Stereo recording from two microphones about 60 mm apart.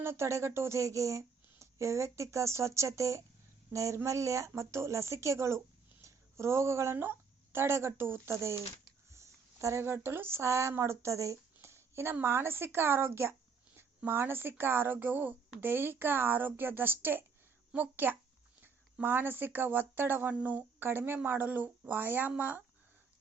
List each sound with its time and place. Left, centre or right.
0.0 s a woman's voice: right
9.1 s a woman's voice: right